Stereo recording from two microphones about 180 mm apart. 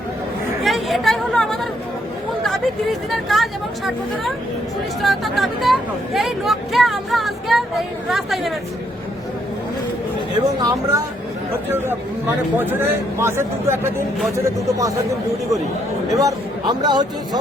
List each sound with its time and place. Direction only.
0.6 s chatter: centre (ahead or behind)
3.1 s speech: centre (ahead or behind)
10.6 s speech: 20° right (ahead or behind)
12.5 s speech: 10° right (ahead or behind)
16.1 s speech: 20° right (ahead or behind)